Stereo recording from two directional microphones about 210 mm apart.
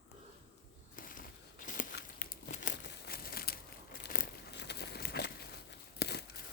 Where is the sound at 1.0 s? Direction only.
40° left (ahead or behind).